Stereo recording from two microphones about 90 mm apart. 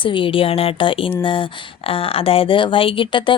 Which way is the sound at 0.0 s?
70° left (ahead or behind).